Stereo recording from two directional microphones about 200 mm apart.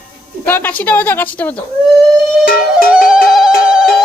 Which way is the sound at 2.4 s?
45° left (ahead or behind).